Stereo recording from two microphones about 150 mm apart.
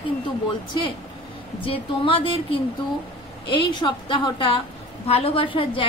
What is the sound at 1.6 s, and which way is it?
A woman's voice, 35° left (ahead or behind).